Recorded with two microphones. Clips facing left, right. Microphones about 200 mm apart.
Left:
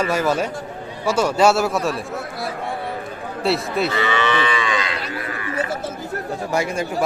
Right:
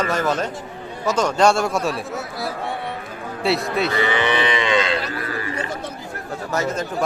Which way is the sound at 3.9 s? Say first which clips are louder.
Right 1 dB; 15° right (ahead or behind).